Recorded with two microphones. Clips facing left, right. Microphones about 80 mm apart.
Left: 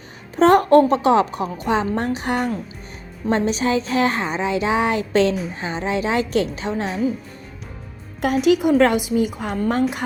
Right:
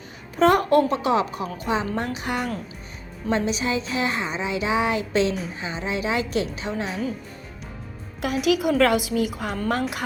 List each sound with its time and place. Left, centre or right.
0.3 s a woman's voice: left
8.2 s a woman's voice: left